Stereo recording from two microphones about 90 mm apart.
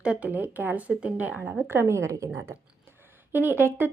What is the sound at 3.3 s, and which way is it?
Speech, 25° right (ahead or behind).